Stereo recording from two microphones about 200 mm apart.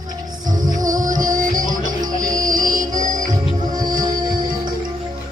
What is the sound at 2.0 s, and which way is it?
Music, 20° right (ahead or behind).